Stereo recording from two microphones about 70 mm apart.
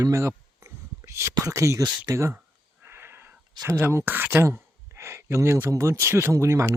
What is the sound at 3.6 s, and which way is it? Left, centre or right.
Speech, right.